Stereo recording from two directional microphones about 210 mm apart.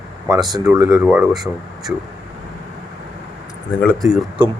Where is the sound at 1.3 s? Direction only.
Centre (ahead or behind).